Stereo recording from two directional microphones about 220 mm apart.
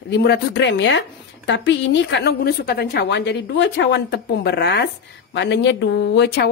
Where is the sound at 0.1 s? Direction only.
50° left (ahead or behind).